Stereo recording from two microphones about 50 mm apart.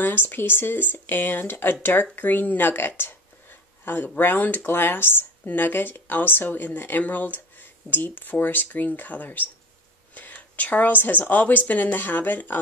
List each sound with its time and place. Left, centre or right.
0.0 s speech: left